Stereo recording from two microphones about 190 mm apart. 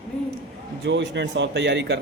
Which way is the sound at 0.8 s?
70° right (ahead or behind).